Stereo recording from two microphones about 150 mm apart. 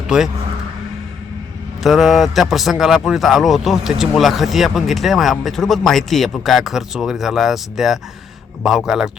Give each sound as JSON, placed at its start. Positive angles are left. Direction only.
{"t": 0.1, "sound": "speech", "side_deg": -5}
{"t": 1.8, "sound": "speech", "side_deg": 0}